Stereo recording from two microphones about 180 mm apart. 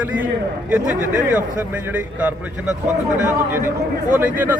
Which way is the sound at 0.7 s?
10° right (ahead or behind).